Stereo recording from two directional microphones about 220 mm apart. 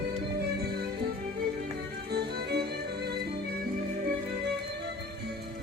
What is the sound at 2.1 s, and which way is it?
Music, 50° right (ahead or behind).